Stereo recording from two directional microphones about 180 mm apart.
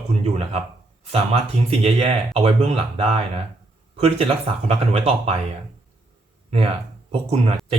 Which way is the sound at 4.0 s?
35° right (ahead or behind).